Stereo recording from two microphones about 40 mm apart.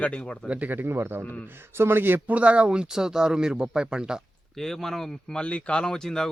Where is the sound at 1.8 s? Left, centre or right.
Right.